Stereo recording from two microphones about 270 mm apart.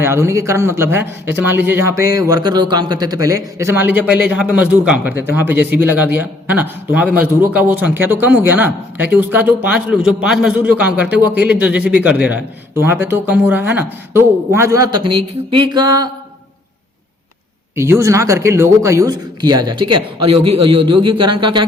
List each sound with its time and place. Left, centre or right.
0.0 s a man's voice: centre
17.7 s a man's voice: centre